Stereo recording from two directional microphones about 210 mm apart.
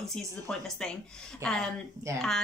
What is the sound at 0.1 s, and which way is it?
A woman's voice, 5° left (ahead or behind).